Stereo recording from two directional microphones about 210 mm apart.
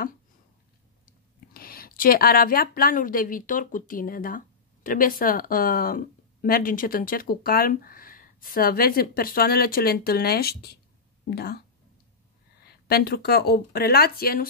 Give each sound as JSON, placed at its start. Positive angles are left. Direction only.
{"t": 1.5, "sound": "a woman's voice", "side_deg": 45}
{"t": 12.6, "sound": "speech", "side_deg": 45}